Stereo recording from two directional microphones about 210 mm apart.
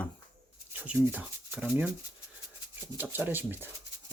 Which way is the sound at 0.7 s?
10° right (ahead or behind).